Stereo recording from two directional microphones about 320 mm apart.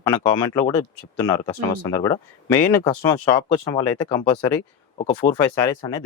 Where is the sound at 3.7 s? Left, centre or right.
Centre.